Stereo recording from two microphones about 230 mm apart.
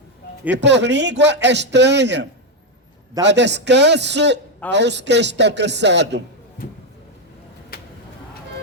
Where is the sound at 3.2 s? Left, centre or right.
Right.